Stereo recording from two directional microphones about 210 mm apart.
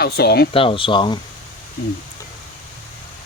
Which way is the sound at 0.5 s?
25° left (ahead or behind).